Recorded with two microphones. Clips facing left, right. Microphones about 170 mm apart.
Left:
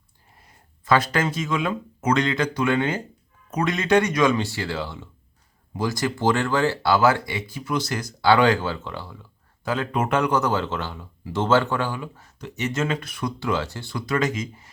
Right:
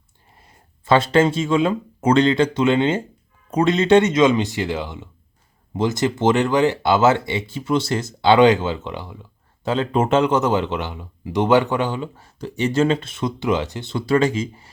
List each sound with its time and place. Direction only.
0.3 s speech: 25° right (ahead or behind)